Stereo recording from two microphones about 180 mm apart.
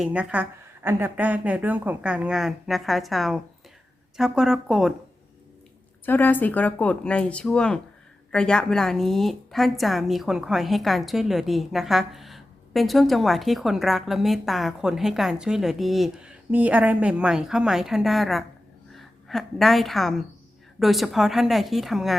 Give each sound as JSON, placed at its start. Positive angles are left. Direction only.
{"t": 0.0, "sound": "a woman's voice", "side_deg": -5}
{"t": 6.1, "sound": "a woman's voice", "side_deg": 10}